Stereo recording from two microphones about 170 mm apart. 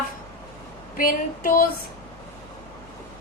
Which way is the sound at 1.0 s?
55° left (ahead or behind).